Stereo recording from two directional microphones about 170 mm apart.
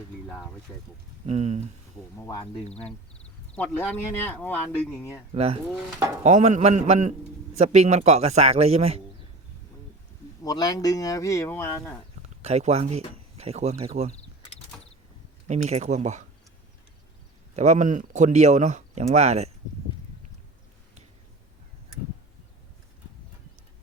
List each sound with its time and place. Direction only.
0.7 s speech: 15° left (ahead or behind)
1.3 s a man's voice: 40° right (ahead or behind)
3.5 s speech: 5° left (ahead or behind)
5.3 s a man's voice: 35° right (ahead or behind)
10.4 s speech: 25° left (ahead or behind)
12.4 s speech: 40° right (ahead or behind)
15.4 s speech: 40° right (ahead or behind)
17.5 s speech: 40° right (ahead or behind)